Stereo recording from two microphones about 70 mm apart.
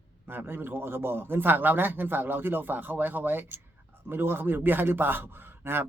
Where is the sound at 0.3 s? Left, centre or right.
Right.